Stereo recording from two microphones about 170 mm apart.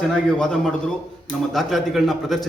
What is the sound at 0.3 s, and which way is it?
A man's voice, 5° left (ahead or behind).